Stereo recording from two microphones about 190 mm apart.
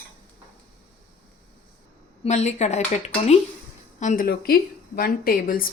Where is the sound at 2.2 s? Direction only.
35° left (ahead or behind).